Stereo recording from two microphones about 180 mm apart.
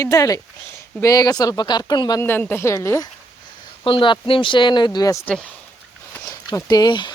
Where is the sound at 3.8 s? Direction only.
25° left (ahead or behind).